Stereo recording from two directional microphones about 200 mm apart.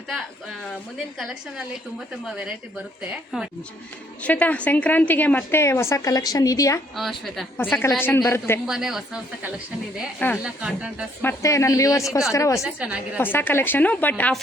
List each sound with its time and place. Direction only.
1.2 s a woman's voice: centre (ahead or behind)
4.2 s a woman's voice: 5° left (ahead or behind)
6.9 s a woman's voice: centre (ahead or behind)
8.6 s a woman's voice: centre (ahead or behind)
11.2 s a woman's voice: 15° left (ahead or behind)
12.5 s a woman's voice: 5° right (ahead or behind)
13.1 s a woman's voice: 10° left (ahead or behind)